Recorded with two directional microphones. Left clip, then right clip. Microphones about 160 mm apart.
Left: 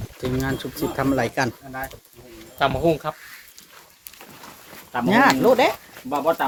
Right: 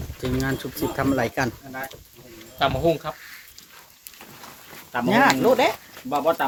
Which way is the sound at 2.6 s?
45° left (ahead or behind).